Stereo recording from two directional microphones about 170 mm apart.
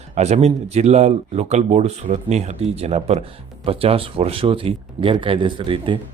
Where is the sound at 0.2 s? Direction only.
40° right (ahead or behind).